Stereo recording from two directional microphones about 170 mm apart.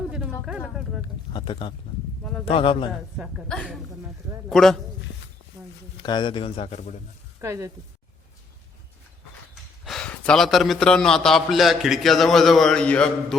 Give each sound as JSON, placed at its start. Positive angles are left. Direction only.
{"t": 0.1, "sound": "speech", "side_deg": -5}
{"t": 1.3, "sound": "a man's voice", "side_deg": 30}
{"t": 2.9, "sound": "a man's voice", "side_deg": 0}
{"t": 6.0, "sound": "a man's voice", "side_deg": 25}
{"t": 7.4, "sound": "speech", "side_deg": -20}
{"t": 9.8, "sound": "a man's voice", "side_deg": 5}